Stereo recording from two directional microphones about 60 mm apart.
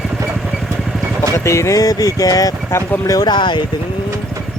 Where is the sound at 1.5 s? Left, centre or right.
Left.